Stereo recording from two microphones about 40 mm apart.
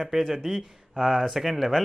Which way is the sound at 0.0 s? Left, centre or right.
Centre.